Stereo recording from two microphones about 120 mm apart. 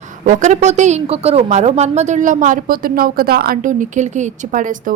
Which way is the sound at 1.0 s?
55° right (ahead or behind).